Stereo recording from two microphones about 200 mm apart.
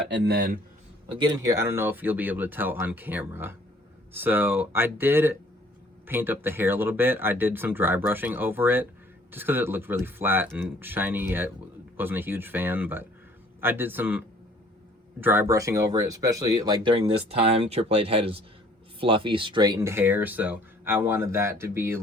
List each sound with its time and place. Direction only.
0.3 s speech: 50° right (ahead or behind)
1.0 s speech: 25° right (ahead or behind)